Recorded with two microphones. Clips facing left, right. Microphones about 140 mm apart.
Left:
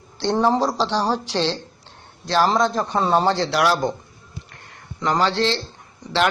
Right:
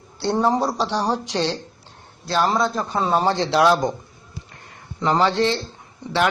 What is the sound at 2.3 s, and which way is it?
Speech, centre (ahead or behind).